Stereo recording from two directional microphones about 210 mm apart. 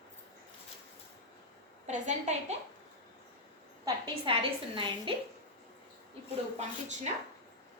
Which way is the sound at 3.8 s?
20° right (ahead or behind).